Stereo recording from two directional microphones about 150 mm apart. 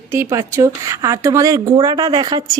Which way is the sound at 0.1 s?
20° right (ahead or behind).